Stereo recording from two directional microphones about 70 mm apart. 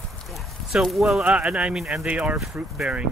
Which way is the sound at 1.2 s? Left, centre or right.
Centre.